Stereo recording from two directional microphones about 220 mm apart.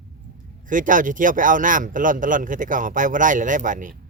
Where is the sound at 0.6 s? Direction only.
35° right (ahead or behind).